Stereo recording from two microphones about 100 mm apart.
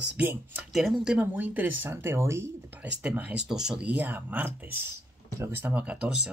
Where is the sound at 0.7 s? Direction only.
5° right (ahead or behind); by 2.5 s 25° right (ahead or behind).